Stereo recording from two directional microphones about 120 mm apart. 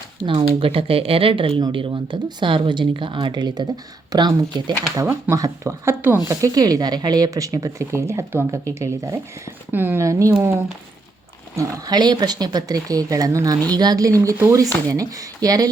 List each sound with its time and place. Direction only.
0.3 s speech: 50° right (ahead or behind)
4.9 s speech: 20° right (ahead or behind)
11.5 s speech: 35° right (ahead or behind)